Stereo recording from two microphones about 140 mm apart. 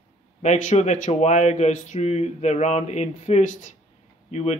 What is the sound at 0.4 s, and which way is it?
Speech, 55° left (ahead or behind).